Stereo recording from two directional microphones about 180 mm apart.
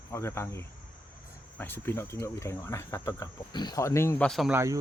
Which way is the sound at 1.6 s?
10° left (ahead or behind).